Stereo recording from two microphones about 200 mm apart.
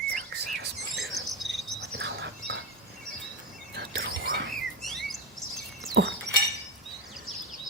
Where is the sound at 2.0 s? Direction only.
60° right (ahead or behind).